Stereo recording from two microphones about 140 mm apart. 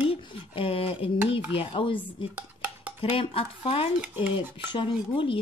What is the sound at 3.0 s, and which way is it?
Speech, 40° left (ahead or behind).